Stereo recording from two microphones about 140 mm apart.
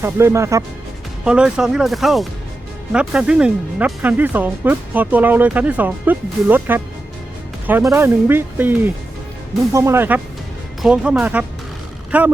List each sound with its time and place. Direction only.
0.0 s speech: 20° right (ahead or behind)
1.2 s speech: 5° right (ahead or behind)